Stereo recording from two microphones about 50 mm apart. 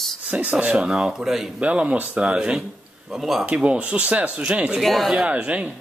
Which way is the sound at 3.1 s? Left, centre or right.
Centre.